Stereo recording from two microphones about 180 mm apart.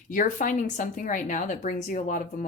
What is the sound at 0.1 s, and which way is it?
A woman's voice, 45° left (ahead or behind).